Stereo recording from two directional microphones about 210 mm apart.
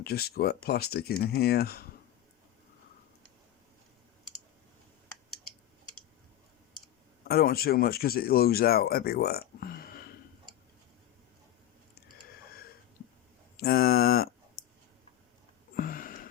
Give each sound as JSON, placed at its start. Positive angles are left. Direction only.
{"t": 0.0, "sound": "speech", "side_deg": 50}
{"t": 7.3, "sound": "speech", "side_deg": 45}
{"t": 13.6, "sound": "speech", "side_deg": 45}
{"t": 15.7, "sound": "a sound", "side_deg": 40}